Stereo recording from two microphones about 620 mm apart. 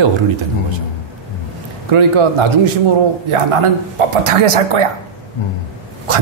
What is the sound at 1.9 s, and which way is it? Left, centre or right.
Speech, right.